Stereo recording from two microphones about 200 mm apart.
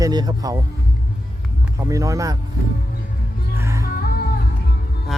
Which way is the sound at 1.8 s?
15° right (ahead or behind).